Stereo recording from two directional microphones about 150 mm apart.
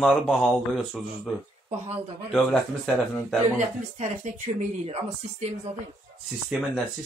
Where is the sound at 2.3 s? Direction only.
5° left (ahead or behind).